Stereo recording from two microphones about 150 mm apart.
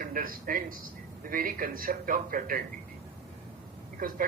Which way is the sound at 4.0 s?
65° right (ahead or behind).